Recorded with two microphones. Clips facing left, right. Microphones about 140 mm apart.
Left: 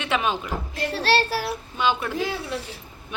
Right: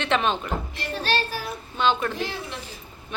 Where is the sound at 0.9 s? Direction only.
90° left.